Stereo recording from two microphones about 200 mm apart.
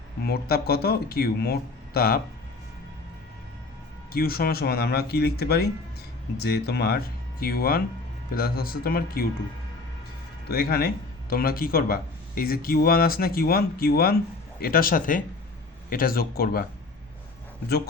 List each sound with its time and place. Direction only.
0.3 s speech: 50° left (ahead or behind)
4.1 s speech: 50° left (ahead or behind)
10.5 s speech: 50° left (ahead or behind)